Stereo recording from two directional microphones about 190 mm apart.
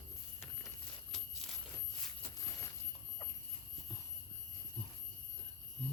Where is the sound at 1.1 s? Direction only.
Centre (ahead or behind).